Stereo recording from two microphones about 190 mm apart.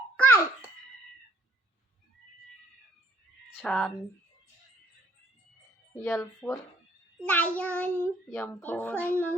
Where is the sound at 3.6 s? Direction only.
5° left (ahead or behind).